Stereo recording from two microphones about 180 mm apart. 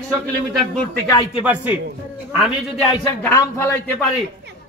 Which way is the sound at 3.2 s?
15° left (ahead or behind).